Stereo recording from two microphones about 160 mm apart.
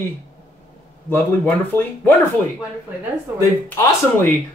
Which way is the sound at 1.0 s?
10° left (ahead or behind).